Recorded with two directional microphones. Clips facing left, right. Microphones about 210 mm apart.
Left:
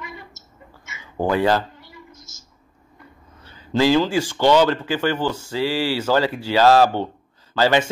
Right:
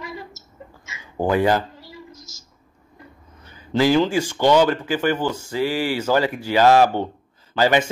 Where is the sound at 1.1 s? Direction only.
15° right (ahead or behind).